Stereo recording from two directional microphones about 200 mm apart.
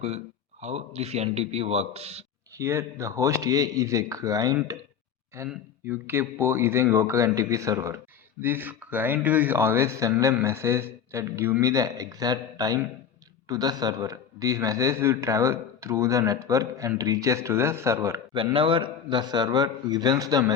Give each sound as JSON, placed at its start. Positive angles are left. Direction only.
{"t": 0.6, "sound": "a man's voice", "side_deg": -30}
{"t": 2.6, "sound": "speech", "side_deg": -15}
{"t": 18.3, "sound": "a man's voice", "side_deg": -25}